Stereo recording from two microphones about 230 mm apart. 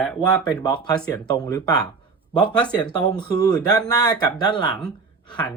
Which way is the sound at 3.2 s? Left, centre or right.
Centre.